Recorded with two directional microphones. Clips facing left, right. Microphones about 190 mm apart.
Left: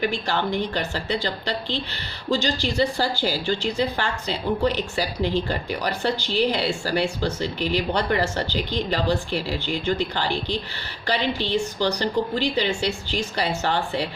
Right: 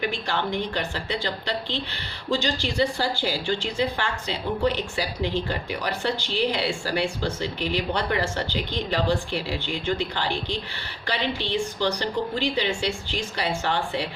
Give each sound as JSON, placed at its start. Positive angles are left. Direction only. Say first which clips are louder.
{"t": 0.0, "sound": "a woman's voice", "louder": "left 3 dB", "side_deg": 40}